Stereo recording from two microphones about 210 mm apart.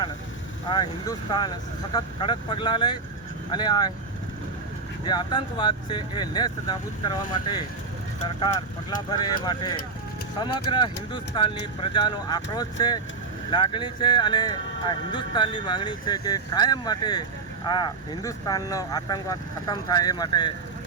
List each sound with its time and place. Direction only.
0.7 s speech: 20° left (ahead or behind)
5.0 s speech: 20° left (ahead or behind)
9.0 s speech: 20° left (ahead or behind)